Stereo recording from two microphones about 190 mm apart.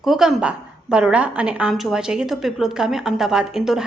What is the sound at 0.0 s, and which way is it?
A woman's voice, centre (ahead or behind).